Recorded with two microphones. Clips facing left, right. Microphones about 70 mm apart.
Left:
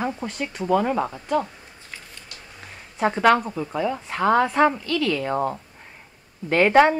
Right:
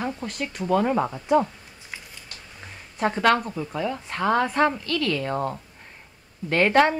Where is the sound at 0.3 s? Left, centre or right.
Centre.